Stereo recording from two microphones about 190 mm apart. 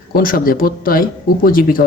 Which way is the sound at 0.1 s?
50° left (ahead or behind).